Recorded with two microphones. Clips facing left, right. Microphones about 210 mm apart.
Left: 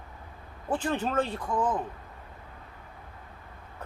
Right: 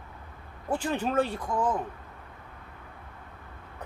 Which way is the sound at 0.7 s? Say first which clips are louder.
Even; 10° right (ahead or behind).